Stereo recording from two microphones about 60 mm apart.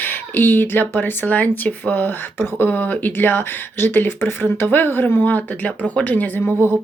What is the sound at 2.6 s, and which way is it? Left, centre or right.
Speech, left.